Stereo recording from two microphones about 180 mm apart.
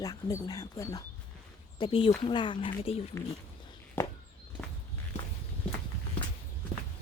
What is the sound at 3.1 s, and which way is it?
Speech, 15° left (ahead or behind).